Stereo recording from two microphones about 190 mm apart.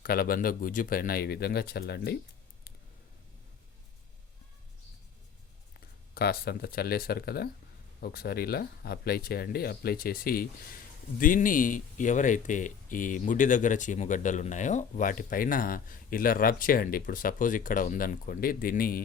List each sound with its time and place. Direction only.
0.0 s speech: 50° left (ahead or behind)
6.1 s speech: 55° left (ahead or behind)